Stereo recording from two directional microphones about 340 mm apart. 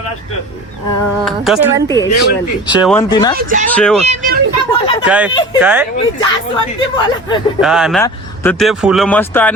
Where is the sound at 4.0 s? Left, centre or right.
Right.